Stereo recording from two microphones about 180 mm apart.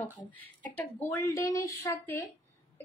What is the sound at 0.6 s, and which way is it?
A woman's voice, 10° left (ahead or behind).